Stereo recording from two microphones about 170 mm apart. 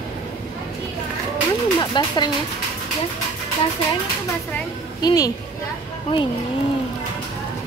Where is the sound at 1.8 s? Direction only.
25° left (ahead or behind).